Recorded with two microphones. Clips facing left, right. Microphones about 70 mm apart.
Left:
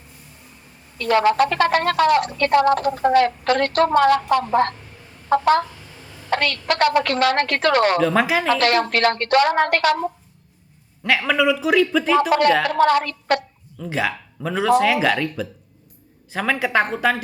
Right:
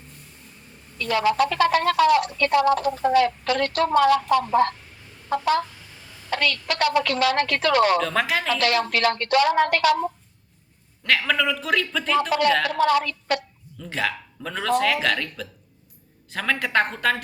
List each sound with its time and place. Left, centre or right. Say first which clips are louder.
0.9 s speech: left 4 dB; left
8.0 s speech: left 5 dB; centre
8.5 s speech: left 4 dB; left
11.0 s speech: left 4 dB; centre
12.8 s speech: left 3 dB; left
13.7 s speech: left 3 dB; centre